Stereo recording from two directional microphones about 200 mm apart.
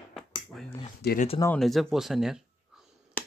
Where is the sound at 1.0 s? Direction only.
55° left (ahead or behind).